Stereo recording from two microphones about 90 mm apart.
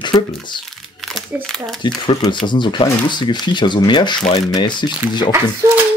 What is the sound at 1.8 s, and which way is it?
Speech, 55° left (ahead or behind).